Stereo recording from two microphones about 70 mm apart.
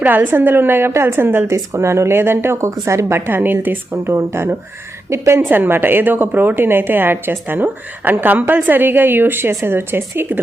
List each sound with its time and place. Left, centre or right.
0.0 s a woman's voice: right
1.5 s a woman's voice: right
3.2 s a woman's voice: right
3.9 s a woman's voice: right